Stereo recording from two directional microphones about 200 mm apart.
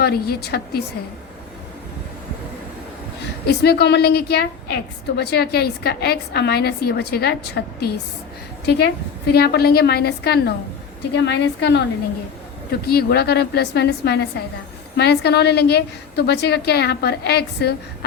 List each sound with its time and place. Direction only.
0.0 s a woman's voice: 50° left (ahead or behind)
3.4 s a woman's voice: 55° left (ahead or behind)
12.8 s a woman's voice: 50° left (ahead or behind)